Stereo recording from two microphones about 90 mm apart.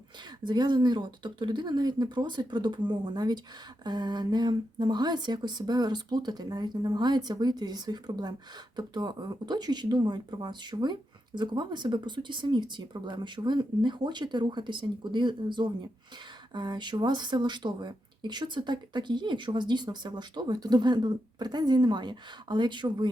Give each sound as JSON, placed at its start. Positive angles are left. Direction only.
{"t": 0.4, "sound": "speech", "side_deg": -55}